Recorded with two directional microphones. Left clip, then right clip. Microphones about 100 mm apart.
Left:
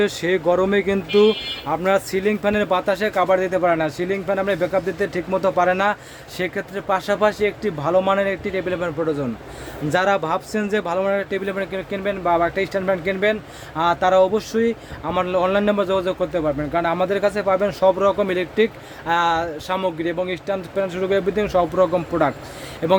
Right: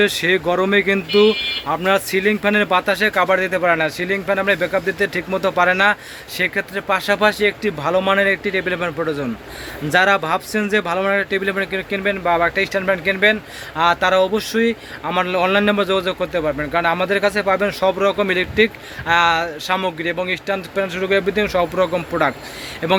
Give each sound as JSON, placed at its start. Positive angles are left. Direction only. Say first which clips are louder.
{"t": 0.0, "sound": "speech", "louder": "right 3 dB", "side_deg": 20}
{"t": 9.9, "sound": "speech", "louder": "right 4 dB", "side_deg": 15}
{"t": 22.8, "sound": "speech", "louder": "even", "side_deg": 20}